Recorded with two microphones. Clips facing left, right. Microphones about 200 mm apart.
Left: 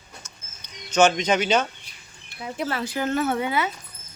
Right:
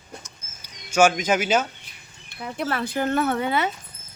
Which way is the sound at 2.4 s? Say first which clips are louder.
Right 1 dB; 55° right (ahead or behind).